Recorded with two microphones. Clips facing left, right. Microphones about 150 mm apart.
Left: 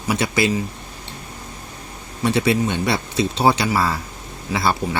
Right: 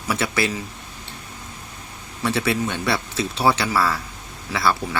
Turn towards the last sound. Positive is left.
turn(degrees=25)  # may be behind; listen again after turning